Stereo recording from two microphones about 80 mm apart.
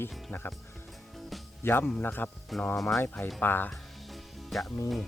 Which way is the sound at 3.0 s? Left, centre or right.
Left.